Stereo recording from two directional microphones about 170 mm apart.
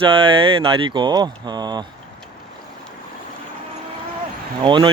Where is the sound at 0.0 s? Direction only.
30° right (ahead or behind).